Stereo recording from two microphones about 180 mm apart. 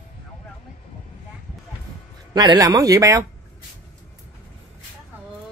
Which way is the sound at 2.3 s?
20° right (ahead or behind).